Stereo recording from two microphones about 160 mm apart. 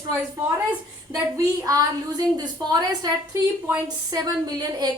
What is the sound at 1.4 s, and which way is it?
A child's voice, 20° right (ahead or behind).